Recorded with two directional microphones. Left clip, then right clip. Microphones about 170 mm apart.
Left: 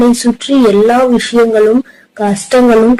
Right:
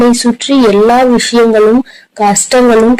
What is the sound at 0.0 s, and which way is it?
Speech, 15° right (ahead or behind).